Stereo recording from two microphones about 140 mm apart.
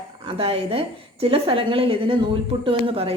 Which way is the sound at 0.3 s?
45° right (ahead or behind).